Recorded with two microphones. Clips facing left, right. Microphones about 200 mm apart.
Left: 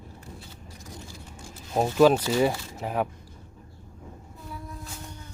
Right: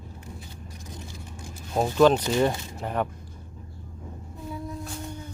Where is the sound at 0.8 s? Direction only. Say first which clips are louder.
Right 1 dB; 20° right (ahead or behind).